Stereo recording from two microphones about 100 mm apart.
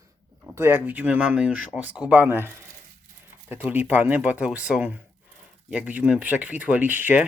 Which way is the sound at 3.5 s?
15° right (ahead or behind).